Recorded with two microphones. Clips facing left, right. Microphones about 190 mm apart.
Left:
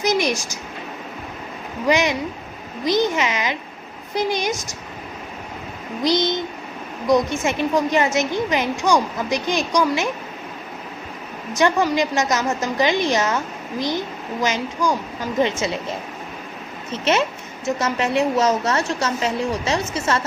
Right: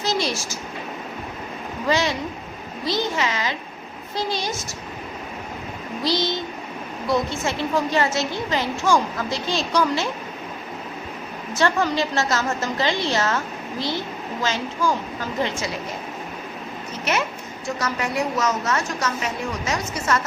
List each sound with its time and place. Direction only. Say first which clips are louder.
0.0 s a woman's voice: left 4 dB; 15° left (ahead or behind)
1.9 s a woman's voice: left 3 dB; 15° left (ahead or behind)
6.0 s a woman's voice: left 4 dB; 20° left (ahead or behind)
11.5 s a woman's voice: left 3 dB; 15° left (ahead or behind)
16.9 s a woman's voice: left 5 dB; 25° left (ahead or behind)